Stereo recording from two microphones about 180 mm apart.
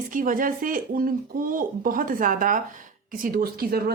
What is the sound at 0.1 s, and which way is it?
Speech, 50° right (ahead or behind).